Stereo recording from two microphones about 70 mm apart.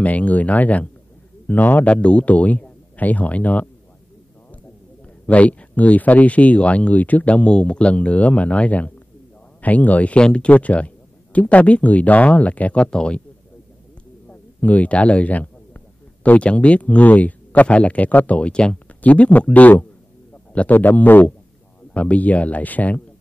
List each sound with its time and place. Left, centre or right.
0.0 s speech: left
5.2 s speech: centre
14.6 s speech: left